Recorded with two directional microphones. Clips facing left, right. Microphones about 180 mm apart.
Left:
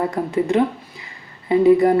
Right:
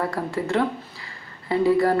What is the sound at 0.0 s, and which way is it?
Speech, 20° left (ahead or behind).